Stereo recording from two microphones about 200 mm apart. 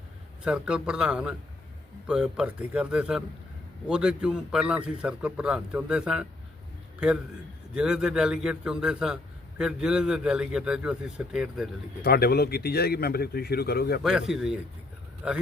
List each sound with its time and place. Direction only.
0.4 s a man's voice: 5° right (ahead or behind)
7.7 s a man's voice: 5° right (ahead or behind)
12.0 s speech: 50° left (ahead or behind)
14.0 s a man's voice: 5° right (ahead or behind)